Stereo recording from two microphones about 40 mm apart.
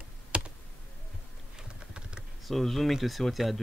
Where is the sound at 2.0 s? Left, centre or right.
Right.